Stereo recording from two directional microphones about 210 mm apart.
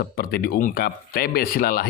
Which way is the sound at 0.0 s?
45° left (ahead or behind).